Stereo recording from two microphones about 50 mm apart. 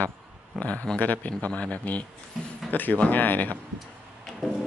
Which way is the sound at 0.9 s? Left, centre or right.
Left.